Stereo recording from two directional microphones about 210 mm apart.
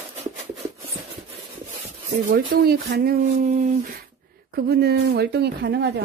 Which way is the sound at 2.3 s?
45° right (ahead or behind).